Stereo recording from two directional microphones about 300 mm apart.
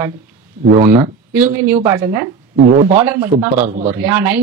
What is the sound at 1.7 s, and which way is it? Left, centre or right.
Speech, centre.